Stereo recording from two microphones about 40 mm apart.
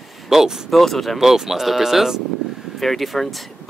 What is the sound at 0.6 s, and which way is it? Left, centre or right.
Speech, centre.